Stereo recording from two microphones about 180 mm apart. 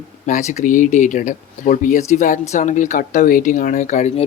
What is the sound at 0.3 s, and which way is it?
Speech, 40° left (ahead or behind).